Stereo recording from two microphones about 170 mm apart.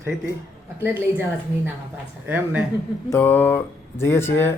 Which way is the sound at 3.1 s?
10° left (ahead or behind).